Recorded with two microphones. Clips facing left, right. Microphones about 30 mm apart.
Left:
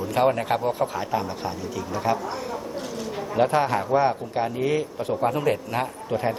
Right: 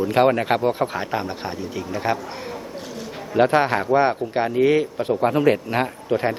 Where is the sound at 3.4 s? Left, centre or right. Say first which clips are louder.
Right 4 dB; right.